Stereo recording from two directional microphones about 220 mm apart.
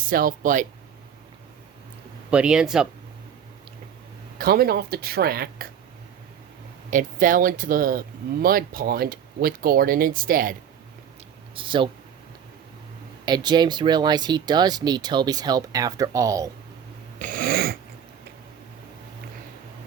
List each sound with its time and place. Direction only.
0.0 s speech: 40° right (ahead or behind)
2.3 s speech: 5° right (ahead or behind)
4.4 s speech: 40° right (ahead or behind)
6.9 s speech: 40° right (ahead or behind)
11.5 s speech: 20° right (ahead or behind)
13.2 s speech: 20° right (ahead or behind)
17.2 s a sound: 40° right (ahead or behind)